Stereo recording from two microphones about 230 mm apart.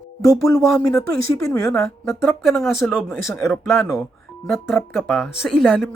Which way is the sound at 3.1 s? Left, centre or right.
Centre.